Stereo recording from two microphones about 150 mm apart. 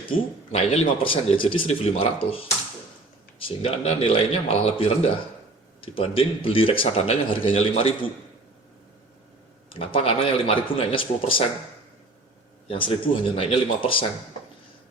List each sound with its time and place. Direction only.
0.1 s a man's voice: 45° left (ahead or behind)
9.6 s a man's voice: 35° left (ahead or behind)
12.6 s a man's voice: 35° left (ahead or behind)